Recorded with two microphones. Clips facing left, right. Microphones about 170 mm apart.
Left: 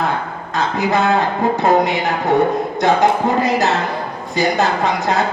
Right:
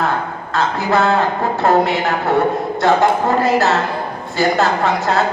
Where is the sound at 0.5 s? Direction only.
15° left (ahead or behind).